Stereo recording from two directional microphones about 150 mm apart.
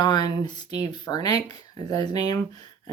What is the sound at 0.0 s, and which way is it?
Speech, 25° left (ahead or behind).